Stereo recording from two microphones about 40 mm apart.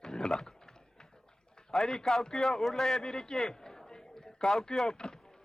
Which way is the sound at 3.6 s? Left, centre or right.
Centre.